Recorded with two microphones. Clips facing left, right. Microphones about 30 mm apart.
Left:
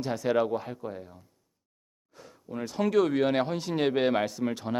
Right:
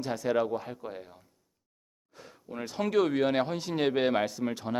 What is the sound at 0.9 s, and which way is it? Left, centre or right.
Speech, right.